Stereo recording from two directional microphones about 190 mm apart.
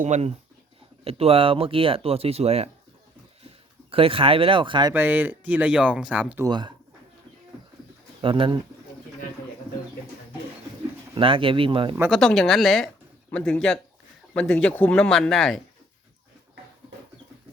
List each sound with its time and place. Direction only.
0.0 s speech: 40° right (ahead or behind)
3.9 s speech: 30° right (ahead or behind)
4.9 s speech: 10° right (ahead or behind)
6.5 s speech: 25° right (ahead or behind)
8.2 s speech: 25° right (ahead or behind)
11.1 s speech: 30° right (ahead or behind)
12.1 s speech: centre (ahead or behind)